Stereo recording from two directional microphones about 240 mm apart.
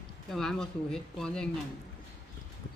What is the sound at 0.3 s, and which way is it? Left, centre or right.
Speech, centre.